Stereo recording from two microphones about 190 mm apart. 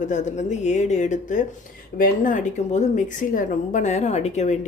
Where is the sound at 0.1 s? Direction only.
40° left (ahead or behind).